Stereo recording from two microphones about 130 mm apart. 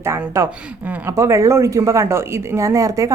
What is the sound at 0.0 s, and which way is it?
Speech, 20° right (ahead or behind).